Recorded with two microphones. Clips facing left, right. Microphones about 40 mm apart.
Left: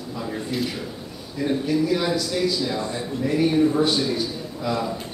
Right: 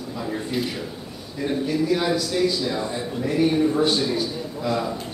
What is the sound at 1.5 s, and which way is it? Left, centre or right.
A man's voice, centre.